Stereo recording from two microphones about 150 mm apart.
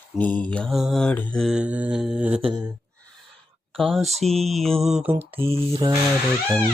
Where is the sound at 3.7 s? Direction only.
Centre (ahead or behind).